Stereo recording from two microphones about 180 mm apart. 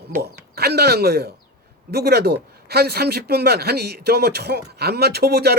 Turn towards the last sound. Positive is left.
turn(degrees=-60)  # may be behind; listen again after turning